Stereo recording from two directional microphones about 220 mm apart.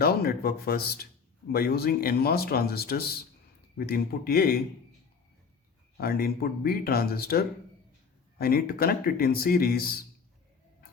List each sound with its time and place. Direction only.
0.0 s speech: 45° left (ahead or behind)
6.0 s speech: 45° left (ahead or behind)